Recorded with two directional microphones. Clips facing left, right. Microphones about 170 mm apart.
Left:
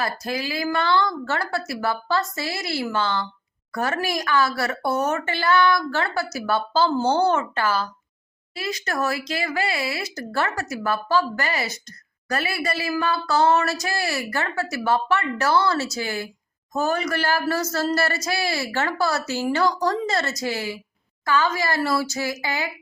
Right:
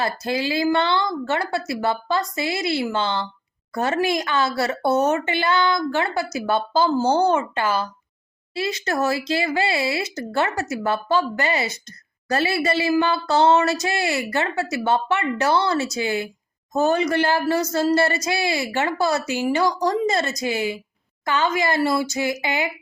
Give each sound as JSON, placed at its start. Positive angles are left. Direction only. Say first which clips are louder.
{"t": 0.0, "sound": "speech", "louder": "right 3 dB", "side_deg": -25}